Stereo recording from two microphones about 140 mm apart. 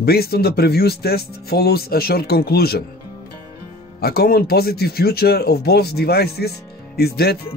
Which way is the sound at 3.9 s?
90° left.